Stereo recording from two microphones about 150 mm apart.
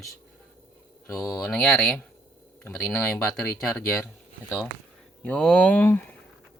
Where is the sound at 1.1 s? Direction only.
20° left (ahead or behind).